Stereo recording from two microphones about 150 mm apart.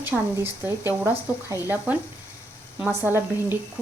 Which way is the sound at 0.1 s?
5° right (ahead or behind).